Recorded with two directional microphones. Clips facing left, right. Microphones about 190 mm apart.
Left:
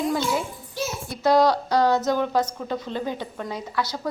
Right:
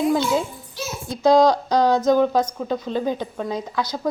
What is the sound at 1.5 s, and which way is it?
A woman's voice, 15° right (ahead or behind).